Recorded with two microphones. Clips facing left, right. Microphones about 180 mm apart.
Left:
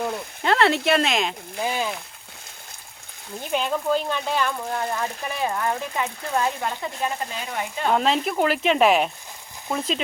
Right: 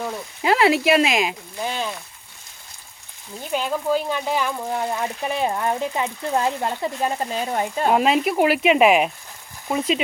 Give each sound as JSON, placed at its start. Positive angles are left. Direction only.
{"t": 0.0, "sound": "speech", "side_deg": -5}
{"t": 1.6, "sound": "a sound", "side_deg": 10}
{"t": 3.5, "sound": "speech", "side_deg": -5}
{"t": 7.9, "sound": "speech", "side_deg": -10}